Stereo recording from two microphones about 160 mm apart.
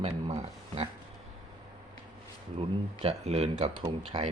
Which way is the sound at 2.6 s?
35° right (ahead or behind).